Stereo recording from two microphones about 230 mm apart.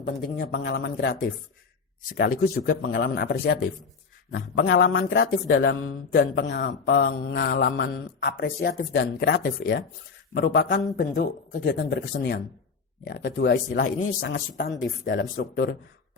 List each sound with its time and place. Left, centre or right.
0.0 s speech: left
13.8 s speech: left
14.2 s speech: left